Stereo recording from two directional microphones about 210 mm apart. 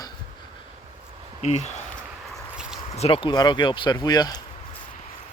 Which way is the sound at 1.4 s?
30° left (ahead or behind).